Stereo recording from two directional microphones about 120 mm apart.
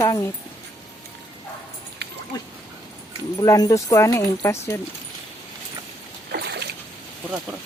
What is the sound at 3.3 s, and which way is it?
Speech, 30° left (ahead or behind).